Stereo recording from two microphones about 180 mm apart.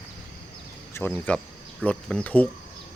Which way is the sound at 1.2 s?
5° left (ahead or behind).